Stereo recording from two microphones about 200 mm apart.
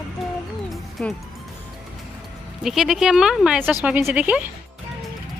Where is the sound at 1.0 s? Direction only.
5° left (ahead or behind).